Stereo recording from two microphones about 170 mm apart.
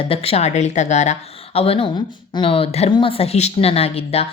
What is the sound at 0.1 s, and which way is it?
A woman's voice, 35° left (ahead or behind).